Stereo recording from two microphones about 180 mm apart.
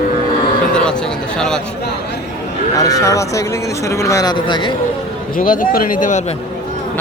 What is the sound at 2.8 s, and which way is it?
Speech, 20° left (ahead or behind).